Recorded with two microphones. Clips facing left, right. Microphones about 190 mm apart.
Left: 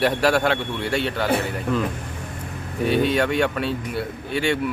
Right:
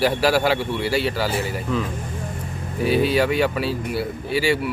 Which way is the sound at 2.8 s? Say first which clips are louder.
Right 1 dB; centre (ahead or behind).